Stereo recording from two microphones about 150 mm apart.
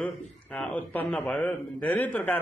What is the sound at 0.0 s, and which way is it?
Speech, 5° left (ahead or behind).